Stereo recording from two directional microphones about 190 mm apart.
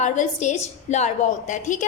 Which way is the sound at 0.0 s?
40° left (ahead or behind).